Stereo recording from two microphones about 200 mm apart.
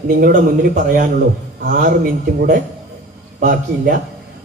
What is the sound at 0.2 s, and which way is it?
Speech, 40° right (ahead or behind).